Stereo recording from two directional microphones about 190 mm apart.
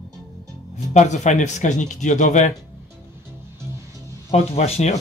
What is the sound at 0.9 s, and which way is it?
A man's voice, 40° left (ahead or behind).